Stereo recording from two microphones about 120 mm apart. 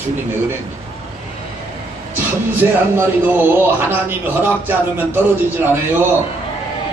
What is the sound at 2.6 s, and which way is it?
A man's voice, 15° right (ahead or behind).